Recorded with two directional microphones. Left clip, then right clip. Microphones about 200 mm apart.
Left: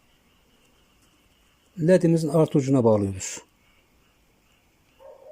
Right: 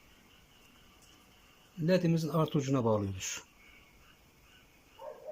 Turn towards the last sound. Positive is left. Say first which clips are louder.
# left 9 dB
turn(degrees=30)  # may be behind; listen again after turning